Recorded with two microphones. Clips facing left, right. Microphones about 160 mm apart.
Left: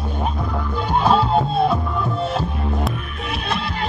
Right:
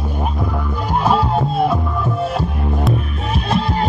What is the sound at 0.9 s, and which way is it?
Music, 5° right (ahead or behind).